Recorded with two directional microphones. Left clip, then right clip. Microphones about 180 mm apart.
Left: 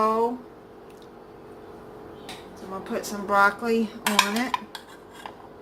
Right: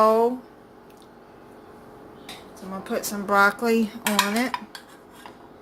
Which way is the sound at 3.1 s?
55° right (ahead or behind).